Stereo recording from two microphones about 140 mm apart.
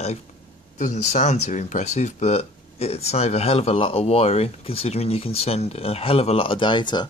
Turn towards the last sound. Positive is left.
turn(degrees=30)  # may be behind; listen again after turning